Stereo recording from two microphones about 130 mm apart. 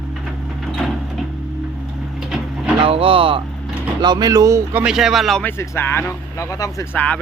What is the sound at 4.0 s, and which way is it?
Speech, 35° right (ahead or behind).